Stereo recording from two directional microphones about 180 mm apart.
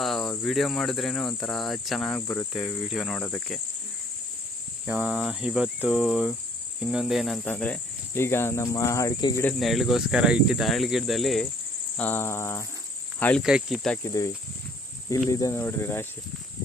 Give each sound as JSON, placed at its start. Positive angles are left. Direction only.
{"t": 0.0, "sound": "cricket", "side_deg": 0}
{"t": 4.9, "sound": "cricket", "side_deg": -10}
{"t": 9.5, "sound": "cricket", "side_deg": 0}
{"t": 11.9, "sound": "cricket", "side_deg": 10}
{"t": 13.1, "sound": "speech", "side_deg": 10}
{"t": 13.4, "sound": "cricket", "side_deg": -5}
{"t": 14.0, "sound": "speech", "side_deg": 20}
{"t": 15.3, "sound": "cricket", "side_deg": 15}